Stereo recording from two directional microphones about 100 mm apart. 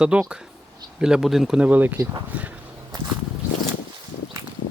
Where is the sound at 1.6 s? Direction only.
15° right (ahead or behind).